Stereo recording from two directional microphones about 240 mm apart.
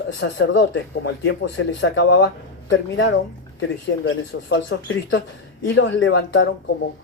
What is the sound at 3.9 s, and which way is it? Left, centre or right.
A man's voice, left.